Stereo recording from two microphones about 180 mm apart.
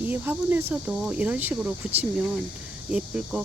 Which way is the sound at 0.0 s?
10° right (ahead or behind).